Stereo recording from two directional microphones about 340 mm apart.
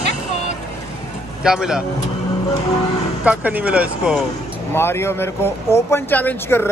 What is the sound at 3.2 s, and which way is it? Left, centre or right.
Speech, centre.